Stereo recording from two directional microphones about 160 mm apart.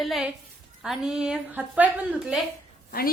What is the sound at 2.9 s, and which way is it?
Speech, 65° left (ahead or behind).